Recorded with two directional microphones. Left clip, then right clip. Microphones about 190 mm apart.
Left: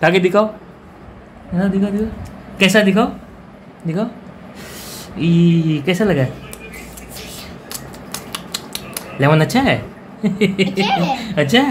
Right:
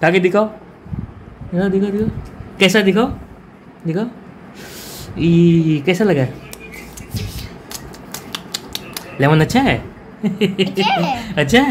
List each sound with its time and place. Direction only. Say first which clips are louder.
0.0 s speech: even; centre (ahead or behind)
1.5 s speech: right 2 dB; 10° right (ahead or behind)
4.9 s a sound: right 3 dB; 10° right (ahead or behind)
5.7 s speech: right 2 dB; 10° right (ahead or behind)
7.7 s scissors: left 1 dB; 10° right (ahead or behind)
10.2 s speech: left 1 dB; centre (ahead or behind)
10.8 s a woman's voice: right 1 dB; 55° right (ahead or behind)
11.1 s speech: even; centre (ahead or behind)